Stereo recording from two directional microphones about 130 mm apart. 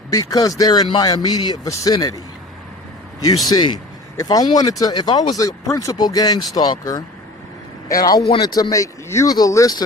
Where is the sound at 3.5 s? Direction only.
35° left (ahead or behind).